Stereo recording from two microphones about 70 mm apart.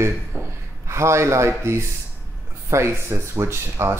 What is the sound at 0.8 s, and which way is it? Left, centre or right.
Speech, right.